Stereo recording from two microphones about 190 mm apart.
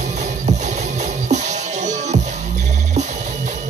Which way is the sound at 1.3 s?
40° right (ahead or behind).